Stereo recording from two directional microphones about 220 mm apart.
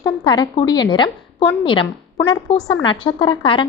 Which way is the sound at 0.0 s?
20° left (ahead or behind).